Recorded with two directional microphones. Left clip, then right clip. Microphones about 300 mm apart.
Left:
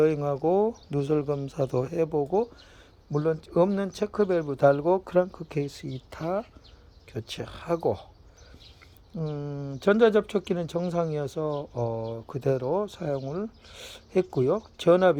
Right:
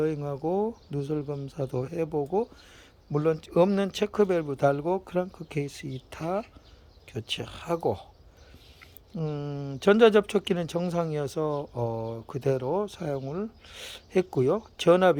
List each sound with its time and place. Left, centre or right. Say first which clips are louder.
0.0 s speech: left 5 dB; centre
9.1 s speech: even; centre